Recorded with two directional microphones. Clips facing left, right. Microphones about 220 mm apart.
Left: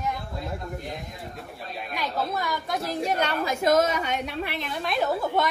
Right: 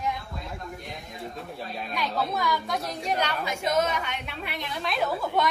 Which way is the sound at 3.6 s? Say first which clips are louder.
Left 4 dB; 45° left (ahead or behind).